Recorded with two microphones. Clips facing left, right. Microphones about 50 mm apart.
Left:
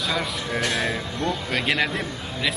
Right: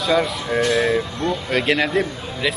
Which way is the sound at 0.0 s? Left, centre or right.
Centre.